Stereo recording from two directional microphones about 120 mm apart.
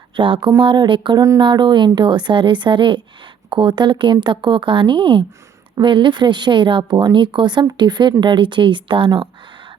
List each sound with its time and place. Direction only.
0.2 s speech: 45° right (ahead or behind)